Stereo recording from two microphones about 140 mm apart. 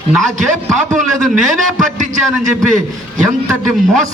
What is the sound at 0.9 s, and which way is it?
A man's voice, centre (ahead or behind).